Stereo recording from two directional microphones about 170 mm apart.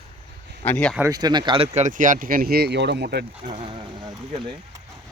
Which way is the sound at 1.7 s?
45° right (ahead or behind).